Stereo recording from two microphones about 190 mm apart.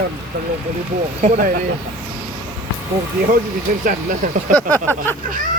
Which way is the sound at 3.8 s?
45° right (ahead or behind).